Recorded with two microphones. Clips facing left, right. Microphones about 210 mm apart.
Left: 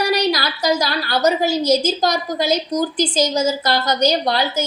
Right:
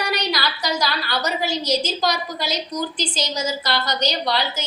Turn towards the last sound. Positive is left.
turn(degrees=45)  # may be behind; listen again after turning